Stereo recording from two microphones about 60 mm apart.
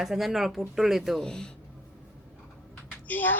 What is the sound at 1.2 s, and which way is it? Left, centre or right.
Speech, centre.